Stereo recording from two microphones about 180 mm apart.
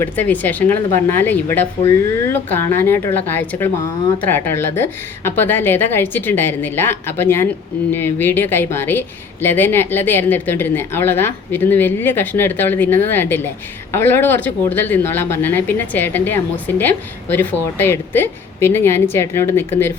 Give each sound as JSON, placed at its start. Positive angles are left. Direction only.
{"t": 0.0, "sound": "a woman's voice", "side_deg": 10}